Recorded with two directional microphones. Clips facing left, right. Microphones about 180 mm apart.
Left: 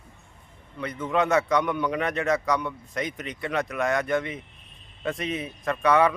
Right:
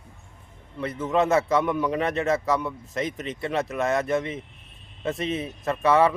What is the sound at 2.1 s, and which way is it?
Speech, 25° right (ahead or behind).